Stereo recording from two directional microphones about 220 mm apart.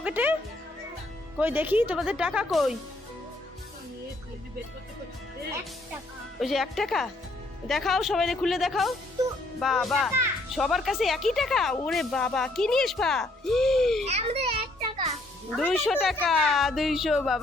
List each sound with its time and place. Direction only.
0.0 s speech: 5° right (ahead or behind)
1.4 s speech: 10° right (ahead or behind)
6.4 s speech: centre (ahead or behind)
14.0 s children playing: 30° right (ahead or behind)
15.5 s speech: centre (ahead or behind)